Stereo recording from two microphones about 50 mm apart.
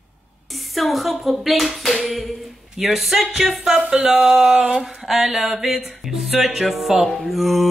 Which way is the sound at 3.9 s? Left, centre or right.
Right.